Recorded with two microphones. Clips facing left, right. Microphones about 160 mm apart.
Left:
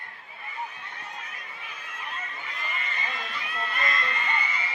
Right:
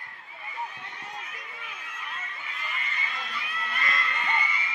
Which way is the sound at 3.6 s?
40° left (ahead or behind).